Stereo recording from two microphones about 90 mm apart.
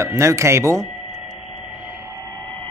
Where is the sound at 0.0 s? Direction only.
35° right (ahead or behind).